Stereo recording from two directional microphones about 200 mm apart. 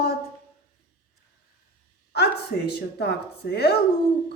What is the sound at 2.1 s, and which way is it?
A woman's voice, 55° left (ahead or behind).